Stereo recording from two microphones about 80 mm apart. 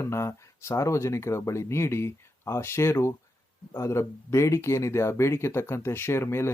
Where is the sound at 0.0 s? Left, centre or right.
Left.